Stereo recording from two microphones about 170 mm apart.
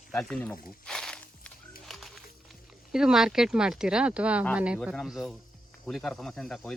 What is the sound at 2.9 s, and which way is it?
Speech, 5° right (ahead or behind).